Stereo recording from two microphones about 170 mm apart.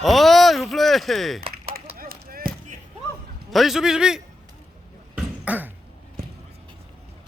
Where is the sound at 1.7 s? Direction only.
60° right (ahead or behind).